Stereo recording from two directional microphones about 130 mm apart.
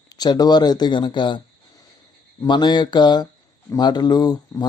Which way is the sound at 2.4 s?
35° left (ahead or behind).